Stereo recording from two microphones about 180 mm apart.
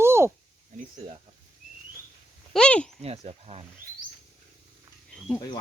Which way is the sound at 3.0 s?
35° right (ahead or behind).